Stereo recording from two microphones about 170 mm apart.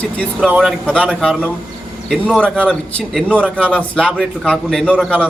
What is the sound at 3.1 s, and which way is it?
A man's voice, 10° right (ahead or behind).